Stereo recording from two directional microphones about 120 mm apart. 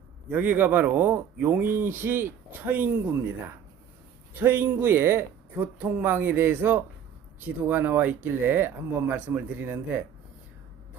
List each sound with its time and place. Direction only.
0.3 s a man's voice: 15° right (ahead or behind)
4.4 s a man's voice: 15° right (ahead or behind)